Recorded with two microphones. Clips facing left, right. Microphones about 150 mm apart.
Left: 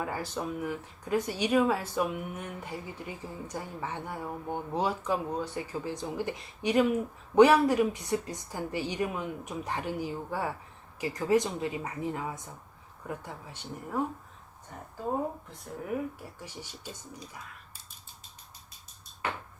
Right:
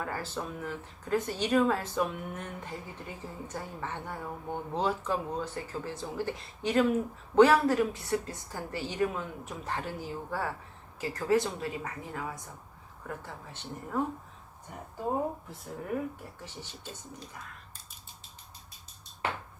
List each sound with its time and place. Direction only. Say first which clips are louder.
0.0 s speech: left 2 dB; 15° left (ahead or behind)
15.4 s speech: even; centre (ahead or behind)
16.4 s speech: left 1 dB; 10° left (ahead or behind)